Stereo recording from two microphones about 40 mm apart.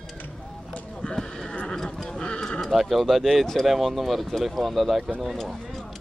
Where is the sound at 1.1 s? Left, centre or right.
Centre.